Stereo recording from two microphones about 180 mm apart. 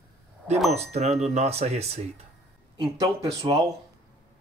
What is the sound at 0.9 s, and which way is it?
Speech, 35° right (ahead or behind).